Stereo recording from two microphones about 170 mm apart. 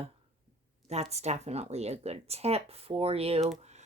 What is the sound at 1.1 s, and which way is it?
Speech, 40° right (ahead or behind).